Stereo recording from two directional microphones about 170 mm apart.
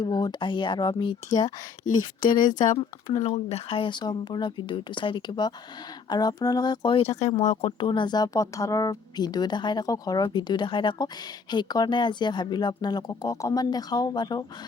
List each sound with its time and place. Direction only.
0.0 s speech: 25° left (ahead or behind)
2.7 s speech: 20° left (ahead or behind)
3.2 s speech: 35° left (ahead or behind)